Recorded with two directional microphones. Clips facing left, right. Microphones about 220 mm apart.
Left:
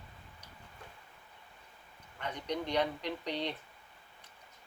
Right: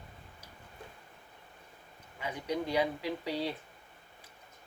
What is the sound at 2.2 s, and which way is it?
Speech, 5° right (ahead or behind).